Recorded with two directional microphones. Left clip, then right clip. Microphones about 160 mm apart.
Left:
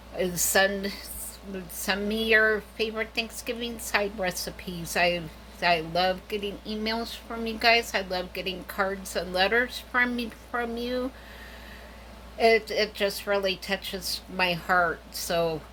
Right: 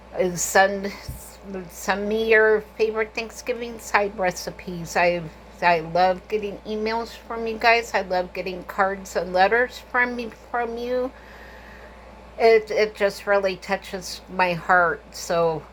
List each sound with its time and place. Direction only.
0.4 s a woman's voice: 35° left (ahead or behind)
1.9 s a woman's voice: 40° left (ahead or behind)
12.4 s a woman's voice: 35° left (ahead or behind)
13.9 s speech: 10° left (ahead or behind)
14.3 s a woman's voice: 35° left (ahead or behind)
14.7 s speech: 15° left (ahead or behind)
15.3 s a woman's voice: 40° left (ahead or behind)